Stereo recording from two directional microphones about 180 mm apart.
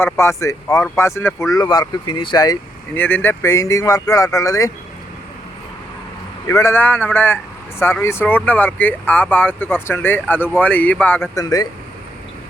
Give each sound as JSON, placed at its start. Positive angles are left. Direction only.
{"t": 0.0, "sound": "speech", "side_deg": 15}
{"t": 2.9, "sound": "speech", "side_deg": 10}
{"t": 6.5, "sound": "speech", "side_deg": 15}